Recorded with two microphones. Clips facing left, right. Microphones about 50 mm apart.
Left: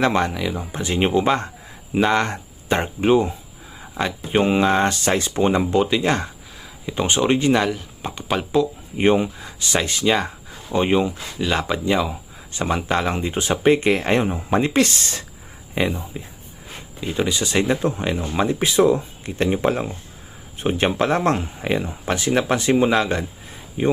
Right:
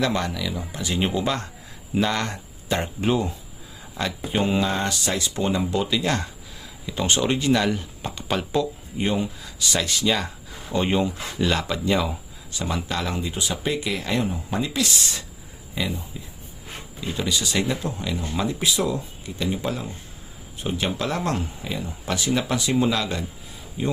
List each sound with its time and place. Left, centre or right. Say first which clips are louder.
0.0 s speech: left 5 dB; left
4.0 s speech: left 4 dB; centre
4.3 s speech: left 6 dB; left
8.0 s speech: left 4 dB; centre
9.0 s speech: left 7 dB; left; by 12.0 s centre
12.5 s speech: left 6 dB; left
17.0 s speech: left 4 dB; left
19.2 s speech: left 7 dB; left
21.6 s speech: left 8 dB; left
21.8 s speech: left 3 dB; left